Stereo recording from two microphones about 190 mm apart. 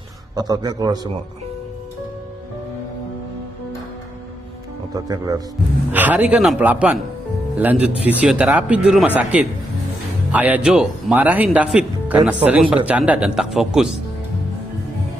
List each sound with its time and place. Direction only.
0.4 s a man's voice: 20° right (ahead or behind)
4.9 s a man's voice: 20° right (ahead or behind)
5.9 s speech: 10° right (ahead or behind)